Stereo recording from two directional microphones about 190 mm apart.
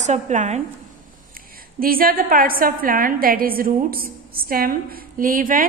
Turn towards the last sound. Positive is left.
turn(degrees=-45)  # may be behind; listen again after turning